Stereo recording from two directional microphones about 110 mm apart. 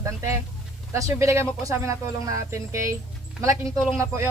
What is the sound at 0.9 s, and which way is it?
Speech, 25° right (ahead or behind).